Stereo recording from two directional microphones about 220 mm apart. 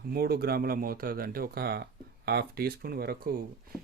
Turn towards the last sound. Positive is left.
turn(degrees=-45)  # may be behind; listen again after turning